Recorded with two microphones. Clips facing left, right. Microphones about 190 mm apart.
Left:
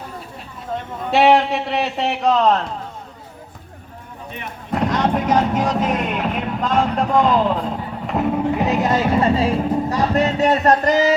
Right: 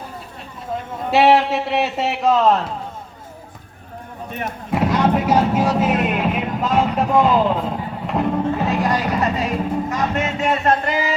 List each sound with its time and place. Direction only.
1.1 s a man's voice: centre (ahead or behind)
4.3 s speech: 50° right (ahead or behind)
4.7 s speech: 5° right (ahead or behind)
8.4 s music: 20° left (ahead or behind); by 11.1 s 40° left (ahead or behind)